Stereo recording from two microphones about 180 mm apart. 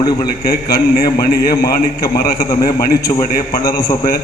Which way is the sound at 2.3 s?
20° left (ahead or behind).